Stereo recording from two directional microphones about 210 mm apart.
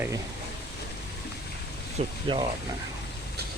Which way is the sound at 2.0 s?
30° right (ahead or behind).